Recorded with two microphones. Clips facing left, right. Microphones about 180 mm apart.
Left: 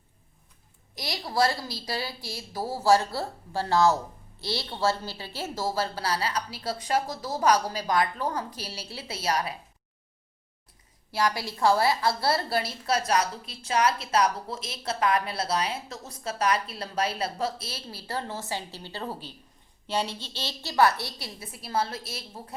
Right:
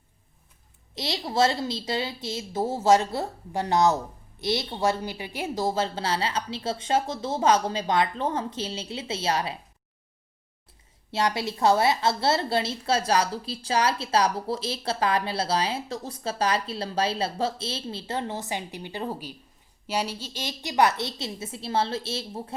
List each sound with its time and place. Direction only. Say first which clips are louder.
0.9 s a woman's voice: right 2 dB; 25° right (ahead or behind)
11.1 s a woman's voice: right 2 dB; 25° right (ahead or behind)